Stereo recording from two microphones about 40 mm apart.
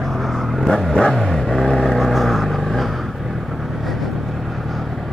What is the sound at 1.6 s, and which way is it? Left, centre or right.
Vehicle, centre.